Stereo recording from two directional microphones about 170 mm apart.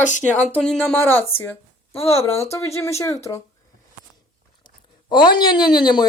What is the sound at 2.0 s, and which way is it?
Speech, 35° left (ahead or behind).